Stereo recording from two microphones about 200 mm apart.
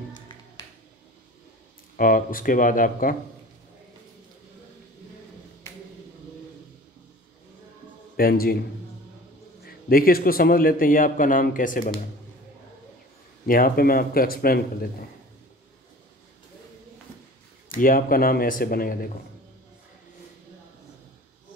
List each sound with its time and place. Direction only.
2.0 s speech: 45° left (ahead or behind)
8.2 s speech: 50° left (ahead or behind)
9.8 s speech: 45° left (ahead or behind)
13.5 s speech: 45° left (ahead or behind)
17.7 s speech: 45° left (ahead or behind)